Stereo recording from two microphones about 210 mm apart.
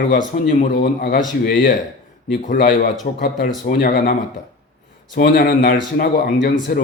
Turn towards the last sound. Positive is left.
turn(degrees=45)  # may be behind; listen again after turning